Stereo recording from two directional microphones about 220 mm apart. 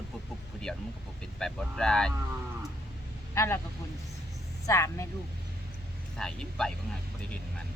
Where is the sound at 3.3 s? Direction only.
10° left (ahead or behind).